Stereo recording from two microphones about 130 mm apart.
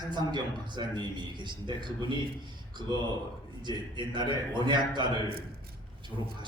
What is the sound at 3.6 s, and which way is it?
A man's voice, 35° right (ahead or behind).